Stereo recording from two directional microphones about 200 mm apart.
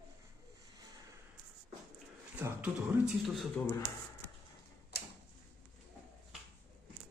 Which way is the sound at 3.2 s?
Centre (ahead or behind).